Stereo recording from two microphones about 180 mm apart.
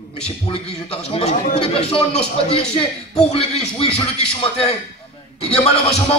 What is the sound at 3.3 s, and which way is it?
Speech, 35° left (ahead or behind).